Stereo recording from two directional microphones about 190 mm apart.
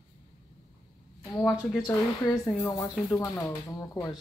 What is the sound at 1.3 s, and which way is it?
Speech, 15° left (ahead or behind).